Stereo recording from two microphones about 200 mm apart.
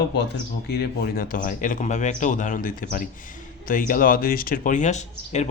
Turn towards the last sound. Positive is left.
turn(degrees=35)  # may be behind; listen again after turning